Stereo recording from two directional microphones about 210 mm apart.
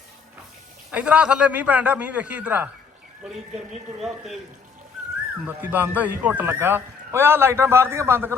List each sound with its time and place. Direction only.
0.9 s speech: 5° right (ahead or behind)
5.5 s speech: 10° right (ahead or behind)